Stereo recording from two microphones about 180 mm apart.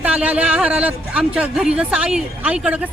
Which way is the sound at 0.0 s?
10° right (ahead or behind).